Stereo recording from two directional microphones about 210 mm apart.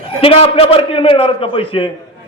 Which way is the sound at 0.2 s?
25° left (ahead or behind).